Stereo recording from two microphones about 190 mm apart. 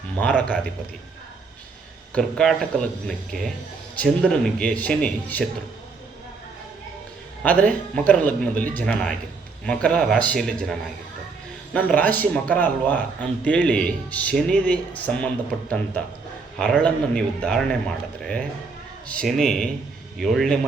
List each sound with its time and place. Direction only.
0.2 s speech: 5° left (ahead or behind)
2.1 s a man's voice: 5° left (ahead or behind)
7.4 s a man's voice: 5° left (ahead or behind)
16.6 s a man's voice: 5° left (ahead or behind)